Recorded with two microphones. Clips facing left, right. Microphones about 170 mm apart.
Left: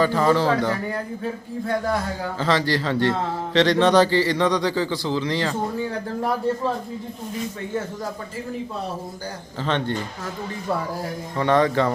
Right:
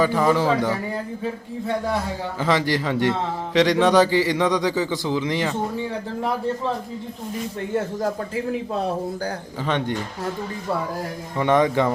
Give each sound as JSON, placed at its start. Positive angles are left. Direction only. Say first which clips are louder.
{"t": 0.0, "sound": "a man's voice", "louder": "even", "side_deg": -10}
{"t": 2.4, "sound": "a man's voice", "louder": "right 1 dB", "side_deg": -15}
{"t": 9.6, "sound": "a man's voice", "louder": "even", "side_deg": -10}
{"t": 11.3, "sound": "a man's voice", "louder": "right 1 dB", "side_deg": -15}